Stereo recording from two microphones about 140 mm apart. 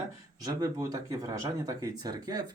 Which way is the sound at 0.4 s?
25° right (ahead or behind).